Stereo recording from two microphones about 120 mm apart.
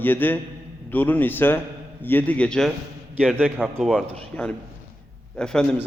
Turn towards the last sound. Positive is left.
turn(degrees=5)  # may be behind; listen again after turning